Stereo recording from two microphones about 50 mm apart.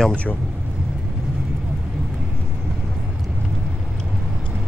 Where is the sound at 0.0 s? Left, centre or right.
Left.